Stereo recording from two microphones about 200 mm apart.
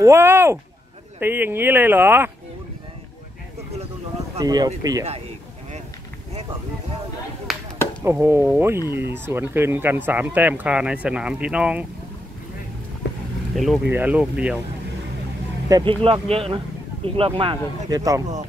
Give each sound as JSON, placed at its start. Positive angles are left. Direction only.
{"t": 0.0, "sound": "speech", "side_deg": -15}
{"t": 4.4, "sound": "speech", "side_deg": -20}
{"t": 7.5, "sound": "a sound", "side_deg": 0}
{"t": 8.0, "sound": "speech", "side_deg": -15}
{"t": 13.0, "sound": "vehicle", "side_deg": 60}
{"t": 13.6, "sound": "speech", "side_deg": -5}
{"t": 15.7, "sound": "speech", "side_deg": -25}